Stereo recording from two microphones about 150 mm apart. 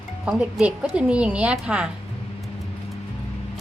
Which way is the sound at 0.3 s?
5° right (ahead or behind).